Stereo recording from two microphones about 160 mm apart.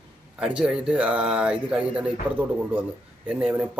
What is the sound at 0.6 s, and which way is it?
Speech, 5° right (ahead or behind).